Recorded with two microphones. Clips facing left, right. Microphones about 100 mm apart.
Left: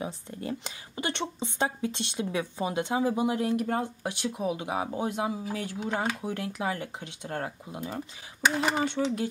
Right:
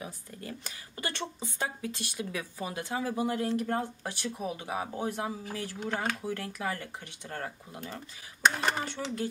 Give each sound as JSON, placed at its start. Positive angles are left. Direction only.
{"t": 0.0, "sound": "speech", "side_deg": 25}
{"t": 8.8, "sound": "speech", "side_deg": 20}